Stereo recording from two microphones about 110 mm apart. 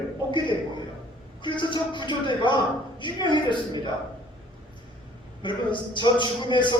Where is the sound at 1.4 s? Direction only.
45° left (ahead or behind).